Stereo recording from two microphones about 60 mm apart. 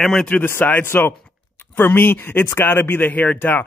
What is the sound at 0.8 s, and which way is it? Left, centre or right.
Speech, left.